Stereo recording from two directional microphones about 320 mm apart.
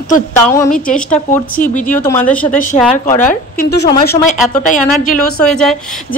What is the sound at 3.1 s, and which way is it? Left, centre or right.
Speech, left.